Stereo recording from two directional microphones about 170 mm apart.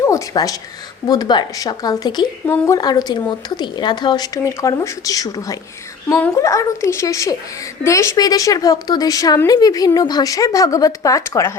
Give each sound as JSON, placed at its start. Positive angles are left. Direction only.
{"t": 0.0, "sound": "speech", "side_deg": 20}
{"t": 6.1, "sound": "speech", "side_deg": 10}